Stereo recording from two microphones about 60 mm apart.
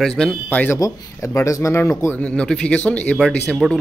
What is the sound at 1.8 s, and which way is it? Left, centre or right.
Speech, left.